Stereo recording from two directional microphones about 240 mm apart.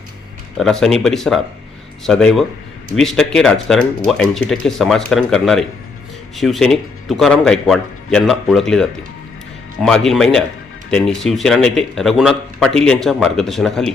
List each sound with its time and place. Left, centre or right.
0.5 s speech: centre